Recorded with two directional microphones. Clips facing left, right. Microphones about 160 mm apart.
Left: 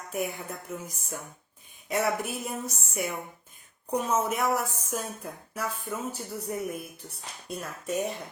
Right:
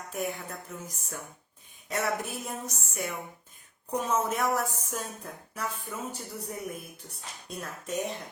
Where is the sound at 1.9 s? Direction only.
10° left (ahead or behind).